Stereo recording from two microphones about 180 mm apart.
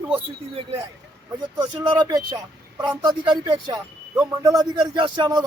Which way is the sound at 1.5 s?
25° right (ahead or behind).